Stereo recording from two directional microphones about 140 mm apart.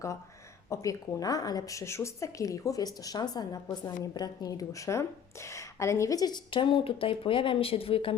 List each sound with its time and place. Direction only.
0.7 s a woman's voice: 25° left (ahead or behind); by 8.1 s 40° left (ahead or behind)